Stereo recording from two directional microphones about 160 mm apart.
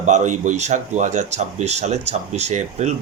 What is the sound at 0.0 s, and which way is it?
Speech, 50° right (ahead or behind).